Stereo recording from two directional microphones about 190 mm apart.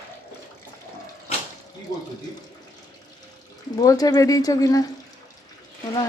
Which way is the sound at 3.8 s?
20° left (ahead or behind).